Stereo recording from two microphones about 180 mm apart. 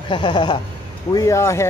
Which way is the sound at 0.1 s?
25° left (ahead or behind).